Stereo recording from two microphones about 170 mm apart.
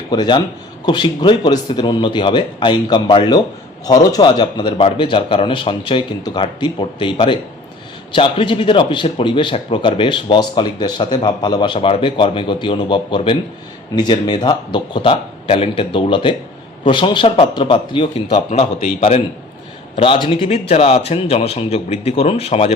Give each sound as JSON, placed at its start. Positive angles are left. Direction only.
{"t": 0.1, "sound": "a man's voice", "side_deg": 25}
{"t": 20.0, "sound": "speech", "side_deg": 30}